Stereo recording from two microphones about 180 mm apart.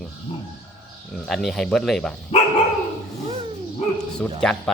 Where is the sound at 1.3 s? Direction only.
Centre (ahead or behind).